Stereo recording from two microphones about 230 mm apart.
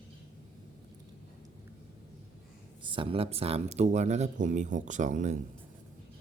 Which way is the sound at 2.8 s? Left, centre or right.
Right.